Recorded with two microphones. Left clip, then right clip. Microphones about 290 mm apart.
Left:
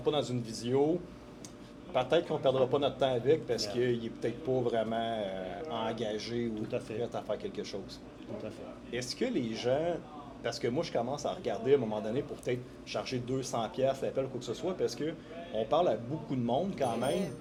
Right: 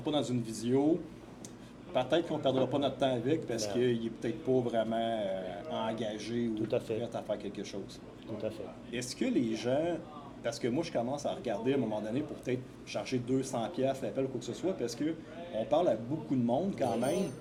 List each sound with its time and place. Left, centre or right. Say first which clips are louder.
0.0 s a man's voice: left 2 dB; left
1.9 s a man's voice: left 1 dB; left
8.9 s a man's voice: left 1 dB; left
16.5 s speech: left 1 dB; left